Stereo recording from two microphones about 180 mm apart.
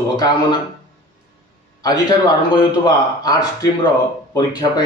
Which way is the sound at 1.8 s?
20° left (ahead or behind).